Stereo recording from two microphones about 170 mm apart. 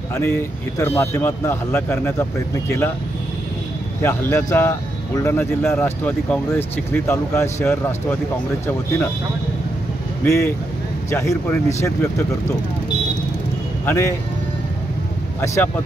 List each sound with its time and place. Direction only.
0.1 s speech: 15° left (ahead or behind)
4.0 s speech: 15° left (ahead or behind)
10.2 s speech: 15° left (ahead or behind)
13.8 s speech: 15° left (ahead or behind)
15.4 s speech: 15° left (ahead or behind)